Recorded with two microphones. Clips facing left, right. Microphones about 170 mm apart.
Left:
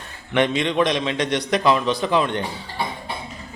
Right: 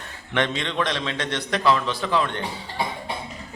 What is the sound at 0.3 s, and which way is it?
A man's voice, 15° left (ahead or behind).